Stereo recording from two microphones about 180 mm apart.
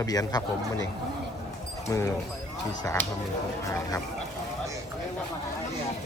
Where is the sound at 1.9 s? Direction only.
20° left (ahead or behind).